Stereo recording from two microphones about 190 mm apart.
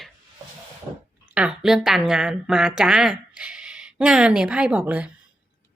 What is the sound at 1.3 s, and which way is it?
A woman's voice, 5° right (ahead or behind).